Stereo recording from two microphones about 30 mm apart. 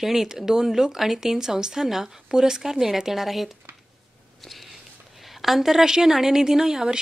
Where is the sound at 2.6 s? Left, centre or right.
Centre.